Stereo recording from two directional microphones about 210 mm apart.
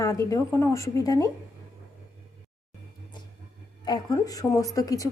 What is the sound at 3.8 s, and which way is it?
A woman's voice, 20° left (ahead or behind).